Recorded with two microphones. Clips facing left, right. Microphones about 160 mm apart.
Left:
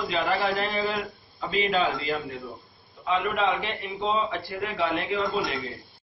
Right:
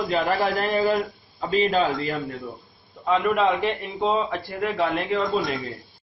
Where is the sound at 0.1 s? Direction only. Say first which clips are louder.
Right 3 dB; 40° right (ahead or behind).